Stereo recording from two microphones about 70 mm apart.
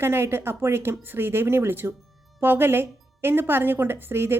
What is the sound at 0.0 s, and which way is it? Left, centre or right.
Speech, right.